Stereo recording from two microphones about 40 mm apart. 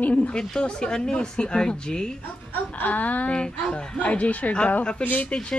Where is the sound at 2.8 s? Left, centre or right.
Left.